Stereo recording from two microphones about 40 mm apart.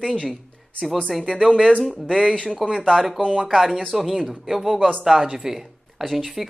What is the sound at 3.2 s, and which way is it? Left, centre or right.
Speech, right.